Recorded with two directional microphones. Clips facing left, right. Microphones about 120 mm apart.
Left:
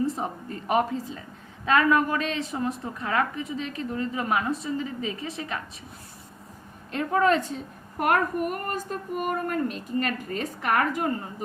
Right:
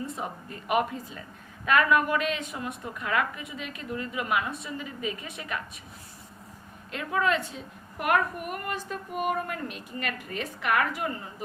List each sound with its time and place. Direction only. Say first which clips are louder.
0.2 s a woman's voice: left 4 dB; 35° left (ahead or behind)
6.9 s a woman's voice: left 5 dB; 40° left (ahead or behind)